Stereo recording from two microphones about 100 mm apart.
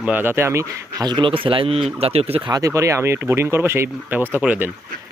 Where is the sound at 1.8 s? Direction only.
85° right.